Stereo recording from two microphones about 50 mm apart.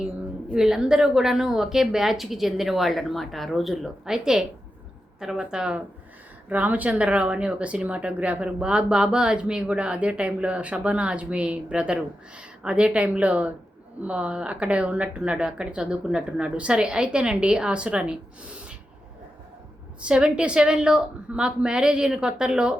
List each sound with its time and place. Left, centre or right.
0.5 s a woman's voice: centre
4.0 s a woman's voice: centre
6.5 s speech: right
20.0 s a woman's voice: centre